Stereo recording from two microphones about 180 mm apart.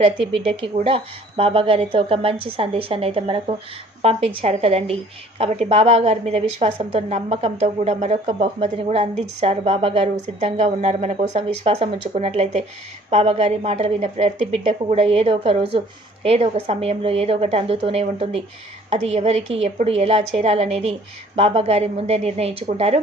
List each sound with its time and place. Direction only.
0.5 s a woman's voice: 30° right (ahead or behind)